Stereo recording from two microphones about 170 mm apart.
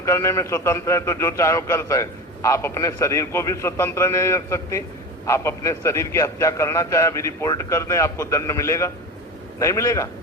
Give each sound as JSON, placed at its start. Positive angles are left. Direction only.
{"t": 0.0, "sound": "a man's voice", "side_deg": 15}